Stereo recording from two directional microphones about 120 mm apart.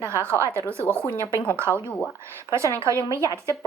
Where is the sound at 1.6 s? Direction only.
20° right (ahead or behind).